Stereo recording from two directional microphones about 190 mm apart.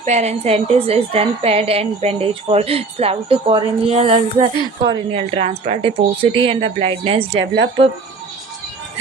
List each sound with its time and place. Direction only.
0.0 s a woman's voice: 35° right (ahead or behind)
7.3 s speech: 65° right (ahead or behind)